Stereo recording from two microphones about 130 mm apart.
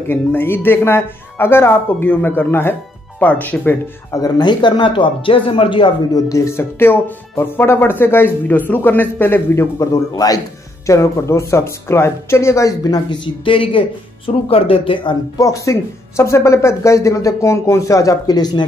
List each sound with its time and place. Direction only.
0.1 s speech: 15° left (ahead or behind)
4.1 s speech: 30° left (ahead or behind)
6.1 s speech: 25° left (ahead or behind); by 15.1 s 45° left (ahead or behind)
15.3 s speech: 25° left (ahead or behind)